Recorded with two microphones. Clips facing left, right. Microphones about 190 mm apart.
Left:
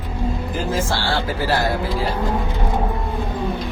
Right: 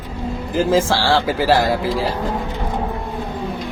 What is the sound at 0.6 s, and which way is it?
A man's voice, 90° right.